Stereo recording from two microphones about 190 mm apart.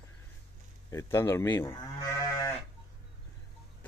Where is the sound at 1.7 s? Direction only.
20° left (ahead or behind).